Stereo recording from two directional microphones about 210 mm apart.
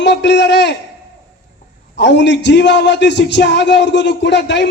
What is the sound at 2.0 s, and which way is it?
Speech, 55° left (ahead or behind).